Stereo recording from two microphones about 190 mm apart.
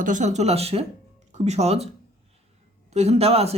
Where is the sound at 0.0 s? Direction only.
40° right (ahead or behind).